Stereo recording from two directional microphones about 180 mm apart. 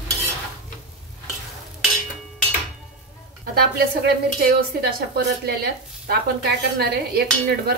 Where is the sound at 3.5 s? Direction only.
60° right (ahead or behind).